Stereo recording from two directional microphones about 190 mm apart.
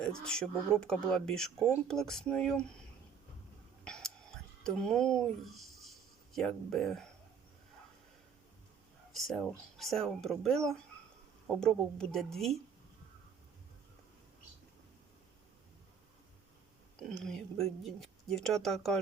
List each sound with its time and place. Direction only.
0.0 s speech: 5° left (ahead or behind)
3.8 s whispering: 5° left (ahead or behind)
6.3 s speech: centre (ahead or behind)
9.1 s speech: centre (ahead or behind)
17.0 s speech: 5° left (ahead or behind)